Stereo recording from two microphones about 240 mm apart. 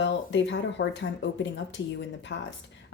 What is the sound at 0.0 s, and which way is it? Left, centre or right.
Speech, left.